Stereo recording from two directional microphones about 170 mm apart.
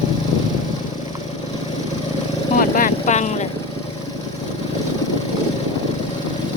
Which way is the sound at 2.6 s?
55° left (ahead or behind).